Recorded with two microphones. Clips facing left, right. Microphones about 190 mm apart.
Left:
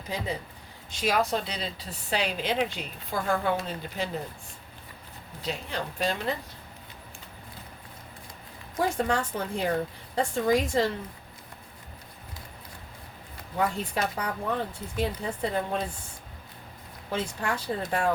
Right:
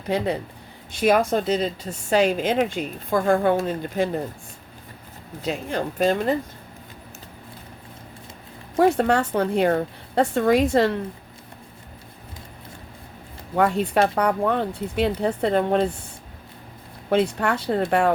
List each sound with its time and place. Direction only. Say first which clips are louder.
0.1 s a woman's voice: right 9 dB; 65° right (ahead or behind)
5.4 s a woman's voice: right 7 dB; 50° right (ahead or behind)
8.8 s speech: right 8 dB; 65° right (ahead or behind)
13.6 s speech: right 9 dB; 65° right (ahead or behind)
17.1 s speech: right 10 dB; 65° right (ahead or behind)